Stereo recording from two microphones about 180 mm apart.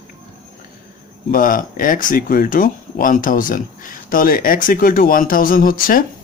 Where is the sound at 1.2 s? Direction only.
50° left (ahead or behind).